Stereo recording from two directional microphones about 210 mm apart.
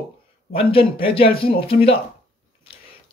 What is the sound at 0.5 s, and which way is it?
Speech, 25° left (ahead or behind).